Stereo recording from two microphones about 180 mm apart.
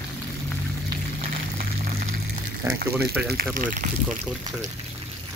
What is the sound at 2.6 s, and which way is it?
Speech, 15° right (ahead or behind).